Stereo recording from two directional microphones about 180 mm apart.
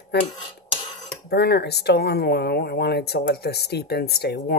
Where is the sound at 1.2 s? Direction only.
65° left (ahead or behind).